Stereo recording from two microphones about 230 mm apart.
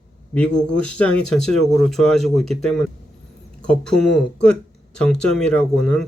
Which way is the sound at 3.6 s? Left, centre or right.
Centre.